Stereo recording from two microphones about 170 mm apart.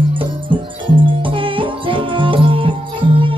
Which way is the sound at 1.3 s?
30° right (ahead or behind).